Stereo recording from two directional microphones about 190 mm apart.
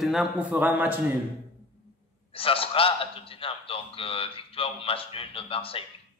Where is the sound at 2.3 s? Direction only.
30° left (ahead or behind).